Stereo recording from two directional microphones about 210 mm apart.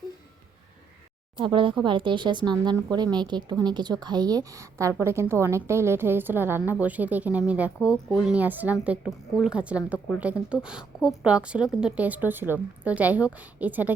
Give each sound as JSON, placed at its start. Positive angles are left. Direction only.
{"t": 1.4, "sound": "a woman's voice", "side_deg": -25}